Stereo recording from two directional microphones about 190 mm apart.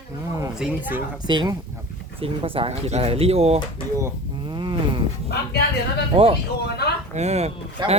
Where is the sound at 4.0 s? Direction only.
20° right (ahead or behind).